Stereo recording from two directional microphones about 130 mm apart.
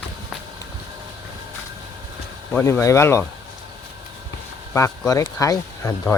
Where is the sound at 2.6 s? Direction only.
25° left (ahead or behind).